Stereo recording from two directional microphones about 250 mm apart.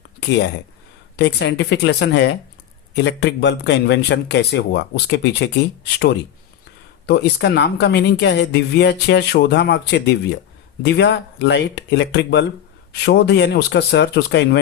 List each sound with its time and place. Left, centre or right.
1.1 s speech: left
7.1 s speech: left